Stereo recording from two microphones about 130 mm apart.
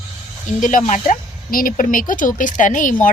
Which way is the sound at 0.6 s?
75° left (ahead or behind).